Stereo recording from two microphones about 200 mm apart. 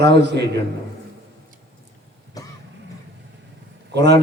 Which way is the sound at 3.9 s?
55° right (ahead or behind).